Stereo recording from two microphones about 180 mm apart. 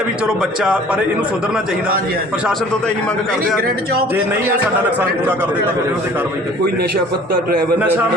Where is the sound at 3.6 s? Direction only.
60° right (ahead or behind).